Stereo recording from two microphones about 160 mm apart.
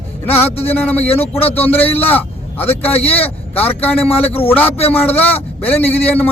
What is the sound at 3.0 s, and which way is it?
Speech, 40° left (ahead or behind).